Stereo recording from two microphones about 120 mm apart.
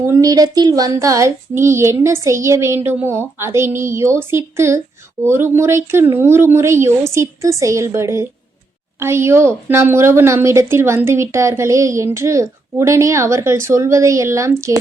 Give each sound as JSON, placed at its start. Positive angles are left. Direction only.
{"t": 0.0, "sound": "a woman's voice", "side_deg": -25}